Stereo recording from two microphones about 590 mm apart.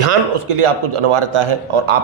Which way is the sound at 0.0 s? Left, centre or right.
Right.